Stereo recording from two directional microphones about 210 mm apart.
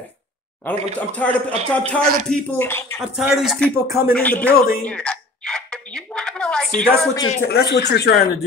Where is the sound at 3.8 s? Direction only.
15° right (ahead or behind).